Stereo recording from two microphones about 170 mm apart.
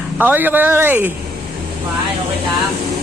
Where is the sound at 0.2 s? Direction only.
10° right (ahead or behind).